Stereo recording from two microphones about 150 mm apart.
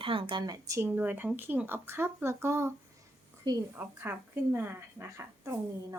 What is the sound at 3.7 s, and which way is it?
A woman's voice, 15° right (ahead or behind).